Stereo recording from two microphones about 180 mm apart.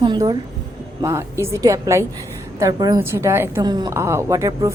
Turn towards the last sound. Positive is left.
turn(degrees=-20)  # may be behind; listen again after turning